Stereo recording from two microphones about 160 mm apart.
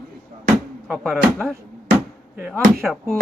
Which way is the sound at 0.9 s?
Centre (ahead or behind).